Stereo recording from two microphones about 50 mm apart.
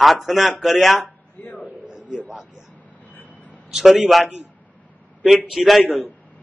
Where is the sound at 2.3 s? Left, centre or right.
Centre.